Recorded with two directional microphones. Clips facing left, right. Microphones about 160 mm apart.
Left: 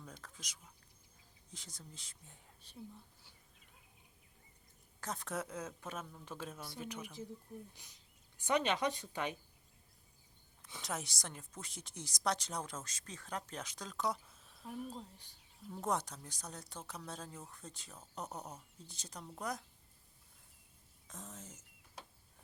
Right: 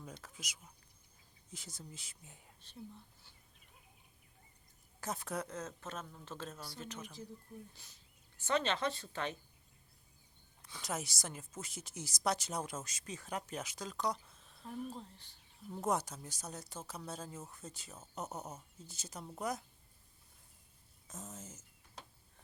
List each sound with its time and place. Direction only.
0.2 s speech: 10° right (ahead or behind)
2.6 s a woman's voice: 10° left (ahead or behind)
4.9 s a woman's voice: 5° right (ahead or behind); by 9.4 s 15° left (ahead or behind)
10.8 s a woman's voice: centre (ahead or behind)
15.7 s a woman's voice: 5° right (ahead or behind)
21.1 s a woman's voice: centre (ahead or behind)